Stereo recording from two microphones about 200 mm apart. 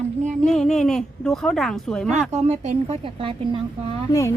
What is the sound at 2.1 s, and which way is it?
Speech, 35° right (ahead or behind).